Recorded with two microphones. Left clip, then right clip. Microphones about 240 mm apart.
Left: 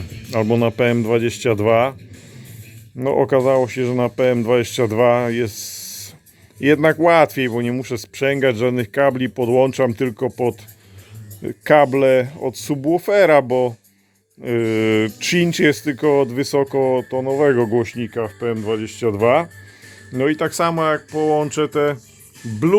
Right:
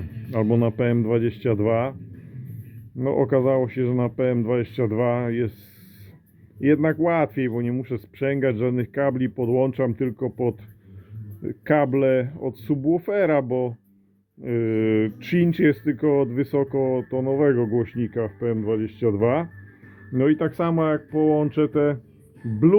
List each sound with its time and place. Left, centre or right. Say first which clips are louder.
0.3 s speech: left 5 dB; centre
3.0 s speech: left 5 dB; centre
6.6 s speech: left 6 dB; left